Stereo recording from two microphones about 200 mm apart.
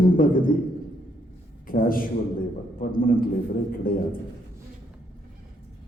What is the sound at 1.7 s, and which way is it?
A man's voice, 45° left (ahead or behind).